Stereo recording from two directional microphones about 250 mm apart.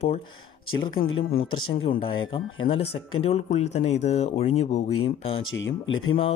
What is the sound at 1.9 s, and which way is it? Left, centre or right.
Speech, left.